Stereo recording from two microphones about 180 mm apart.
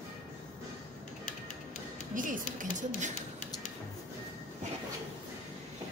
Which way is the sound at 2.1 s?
45° right (ahead or behind).